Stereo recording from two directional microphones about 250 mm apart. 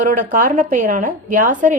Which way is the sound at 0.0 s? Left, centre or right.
Right.